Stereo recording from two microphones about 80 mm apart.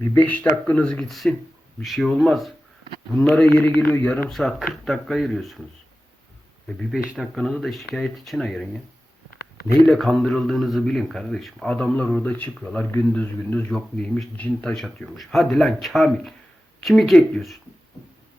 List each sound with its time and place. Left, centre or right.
0.2 s speech: centre
1.0 s a man's voice: centre
3.8 s speech: left
4.3 s a man's voice: centre
7.2 s a man's voice: centre
9.9 s a man's voice: centre
11.8 s a man's voice: centre